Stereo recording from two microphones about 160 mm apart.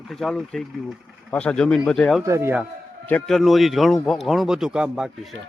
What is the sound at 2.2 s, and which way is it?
Speech, 15° right (ahead or behind).